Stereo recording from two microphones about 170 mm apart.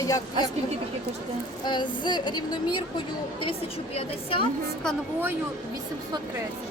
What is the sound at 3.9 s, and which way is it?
Speech, 30° left (ahead or behind).